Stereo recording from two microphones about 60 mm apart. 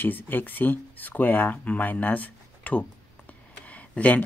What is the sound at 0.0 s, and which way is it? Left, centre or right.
Speech, left.